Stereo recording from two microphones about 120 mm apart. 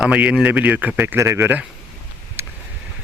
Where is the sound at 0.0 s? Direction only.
10° right (ahead or behind).